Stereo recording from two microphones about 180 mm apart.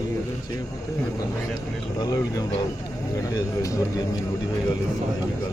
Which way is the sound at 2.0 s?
20° left (ahead or behind).